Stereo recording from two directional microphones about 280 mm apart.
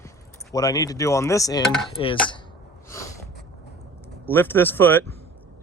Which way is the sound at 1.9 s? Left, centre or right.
Centre.